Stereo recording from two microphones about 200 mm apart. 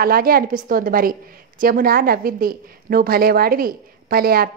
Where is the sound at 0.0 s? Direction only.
50° right (ahead or behind).